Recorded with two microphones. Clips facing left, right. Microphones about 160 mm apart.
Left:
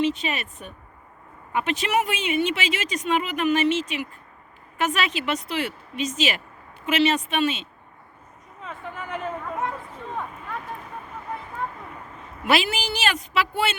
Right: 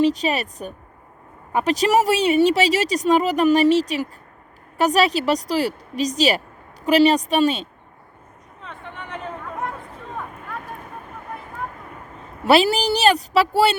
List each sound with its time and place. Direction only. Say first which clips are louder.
0.0 s speech: right 6 dB; 40° right (ahead or behind)
8.6 s a sound: left 2 dB; 5° left (ahead or behind)
11.1 s vehicle: left 2 dB; centre (ahead or behind)
12.5 s speech: right 7 dB; 35° right (ahead or behind)